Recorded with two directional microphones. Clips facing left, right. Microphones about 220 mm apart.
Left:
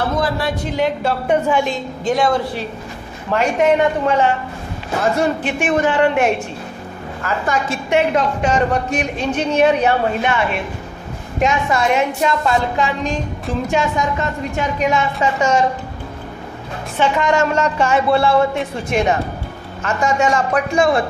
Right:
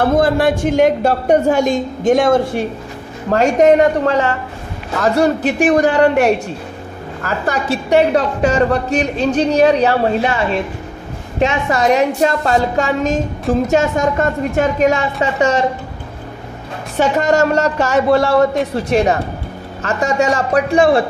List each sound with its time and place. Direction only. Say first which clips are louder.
0.0 s a woman's voice: right 7 dB; 50° right (ahead or behind)
17.0 s speech: right 3 dB; 40° right (ahead or behind)